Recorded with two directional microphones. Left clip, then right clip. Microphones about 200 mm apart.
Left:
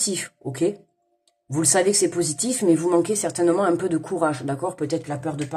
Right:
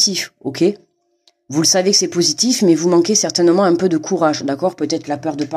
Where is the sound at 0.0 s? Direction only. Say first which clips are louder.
Right 10 dB; 50° right (ahead or behind).